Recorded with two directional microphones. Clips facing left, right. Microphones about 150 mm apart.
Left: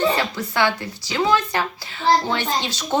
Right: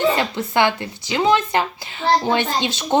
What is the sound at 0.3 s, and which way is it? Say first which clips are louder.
Speech: right 3 dB; 20° right (ahead or behind).